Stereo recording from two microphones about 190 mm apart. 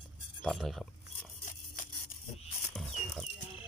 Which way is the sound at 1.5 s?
45° left (ahead or behind).